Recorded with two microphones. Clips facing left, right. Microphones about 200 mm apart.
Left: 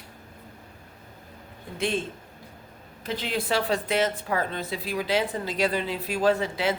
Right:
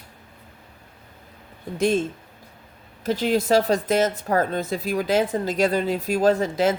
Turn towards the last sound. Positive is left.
turn(degrees=-45)  # may be behind; listen again after turning